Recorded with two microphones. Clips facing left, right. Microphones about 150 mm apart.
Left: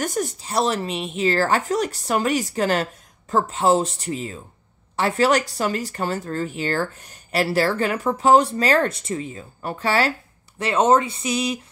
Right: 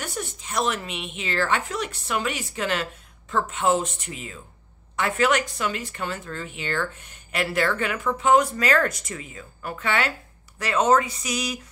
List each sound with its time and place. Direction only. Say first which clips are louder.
0.0 s speech: left 8 dB; 40° left (ahead or behind)